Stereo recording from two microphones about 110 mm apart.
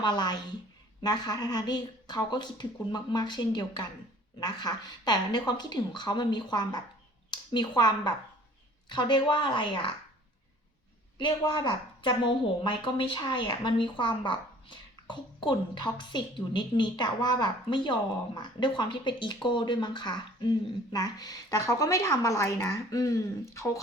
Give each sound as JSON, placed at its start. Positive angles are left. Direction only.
{"t": 0.0, "sound": "speech", "side_deg": 40}
{"t": 7.3, "sound": "a sound", "side_deg": 40}
{"t": 7.8, "sound": "a woman's voice", "side_deg": 40}
{"t": 11.2, "sound": "a woman's voice", "side_deg": 40}